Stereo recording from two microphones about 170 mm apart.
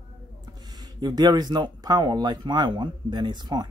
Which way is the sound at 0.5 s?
25° right (ahead or behind).